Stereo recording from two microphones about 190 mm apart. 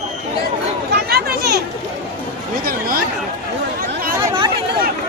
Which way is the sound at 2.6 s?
50° right (ahead or behind).